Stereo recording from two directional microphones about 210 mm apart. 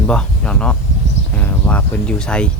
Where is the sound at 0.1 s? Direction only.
5° left (ahead or behind).